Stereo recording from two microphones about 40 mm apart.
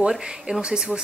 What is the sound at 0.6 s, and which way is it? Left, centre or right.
Speech, right.